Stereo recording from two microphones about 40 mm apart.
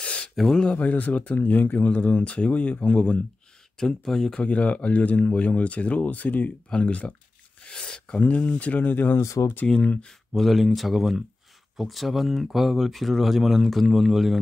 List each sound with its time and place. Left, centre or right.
0.0 s a sound: left
0.7 s speech: left
1.9 s speech: left
3.7 s speech: centre
4.4 s speech: left
7.7 s a sound: centre
8.1 s speech: left
10.0 s speech: centre